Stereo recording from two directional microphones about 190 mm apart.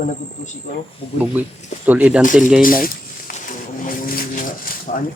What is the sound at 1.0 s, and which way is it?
Speech, 30° left (ahead or behind).